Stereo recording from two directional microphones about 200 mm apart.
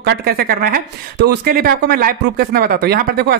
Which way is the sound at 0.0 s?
55° right (ahead or behind).